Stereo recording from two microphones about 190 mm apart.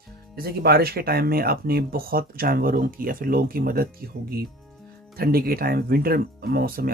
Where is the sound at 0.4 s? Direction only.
55° right (ahead or behind).